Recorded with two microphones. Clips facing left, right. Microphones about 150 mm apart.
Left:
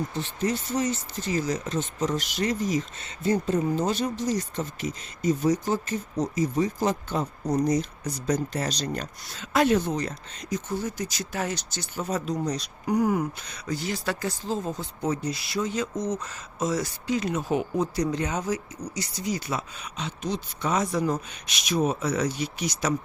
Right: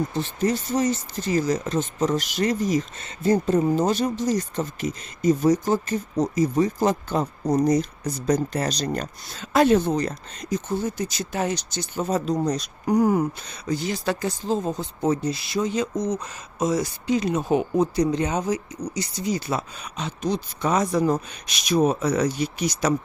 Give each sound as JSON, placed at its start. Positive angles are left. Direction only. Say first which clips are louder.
{"t": 0.2, "sound": "speech", "louder": "right 3 dB", "side_deg": -40}